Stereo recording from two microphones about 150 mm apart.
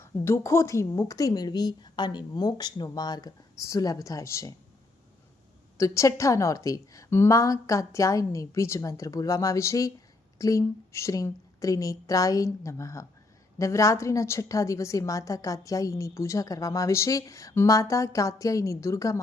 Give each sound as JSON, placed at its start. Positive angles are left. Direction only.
{"t": 0.0, "sound": "a woman's voice", "side_deg": 15}
{"t": 5.7, "sound": "a woman's voice", "side_deg": 20}